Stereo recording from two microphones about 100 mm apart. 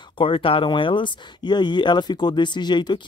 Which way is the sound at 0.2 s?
60° left (ahead or behind).